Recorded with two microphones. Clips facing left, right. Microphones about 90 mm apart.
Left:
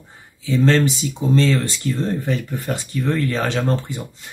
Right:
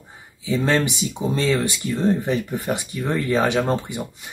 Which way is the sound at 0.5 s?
15° right (ahead or behind).